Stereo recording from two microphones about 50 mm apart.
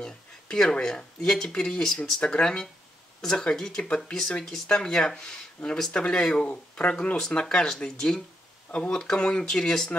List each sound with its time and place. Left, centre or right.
0.0 s speech: centre